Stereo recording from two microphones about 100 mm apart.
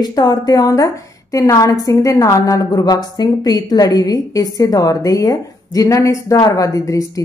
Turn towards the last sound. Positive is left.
turn(degrees=35)  # may be behind; listen again after turning